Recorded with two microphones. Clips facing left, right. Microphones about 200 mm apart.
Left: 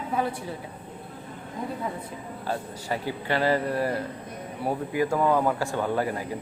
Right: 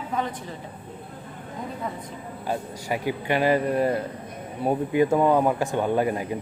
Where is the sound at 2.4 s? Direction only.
15° right (ahead or behind).